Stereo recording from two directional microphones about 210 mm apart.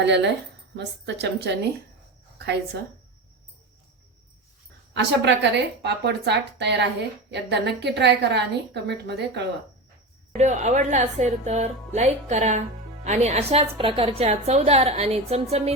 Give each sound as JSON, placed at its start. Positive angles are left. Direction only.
{"t": 0.0, "sound": "a woman's voice", "side_deg": -55}
{"t": 4.9, "sound": "a woman's voice", "side_deg": -55}
{"t": 10.3, "sound": "a woman's voice", "side_deg": -35}